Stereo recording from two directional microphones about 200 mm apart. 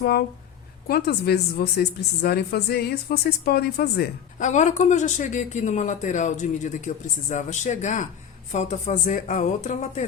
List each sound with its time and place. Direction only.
0.0 s speech: 50° left (ahead or behind)
4.4 s speech: 35° left (ahead or behind)